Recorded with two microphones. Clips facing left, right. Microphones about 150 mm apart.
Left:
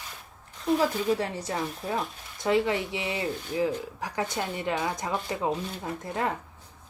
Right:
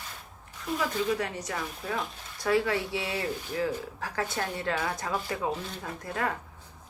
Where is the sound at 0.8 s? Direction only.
30° left (ahead or behind).